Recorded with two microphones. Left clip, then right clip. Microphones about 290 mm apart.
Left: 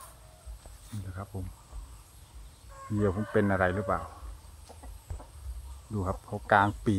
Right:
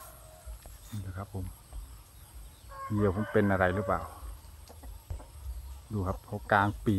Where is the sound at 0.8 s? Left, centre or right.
Centre.